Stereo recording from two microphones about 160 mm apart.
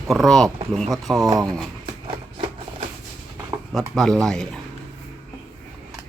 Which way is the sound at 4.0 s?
5° left (ahead or behind).